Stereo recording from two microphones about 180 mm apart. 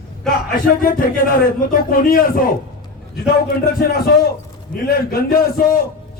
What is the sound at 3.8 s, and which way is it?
A man's voice, 60° left (ahead or behind).